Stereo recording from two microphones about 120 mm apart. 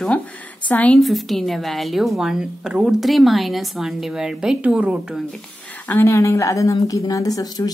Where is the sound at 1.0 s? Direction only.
Centre (ahead or behind).